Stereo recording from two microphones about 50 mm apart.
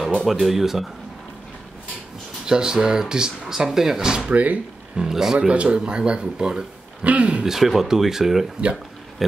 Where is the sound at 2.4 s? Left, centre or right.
Centre.